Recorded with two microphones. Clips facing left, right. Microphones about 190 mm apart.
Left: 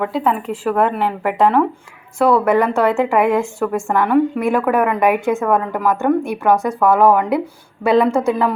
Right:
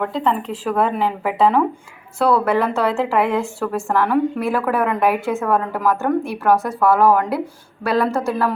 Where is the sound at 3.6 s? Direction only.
5° left (ahead or behind).